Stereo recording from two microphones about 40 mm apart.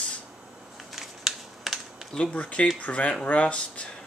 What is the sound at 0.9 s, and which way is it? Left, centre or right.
Computer keyboard, centre.